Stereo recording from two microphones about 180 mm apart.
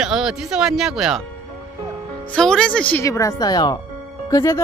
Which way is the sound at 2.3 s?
5° left (ahead or behind).